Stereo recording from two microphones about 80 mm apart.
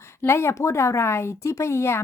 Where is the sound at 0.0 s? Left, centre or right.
Left.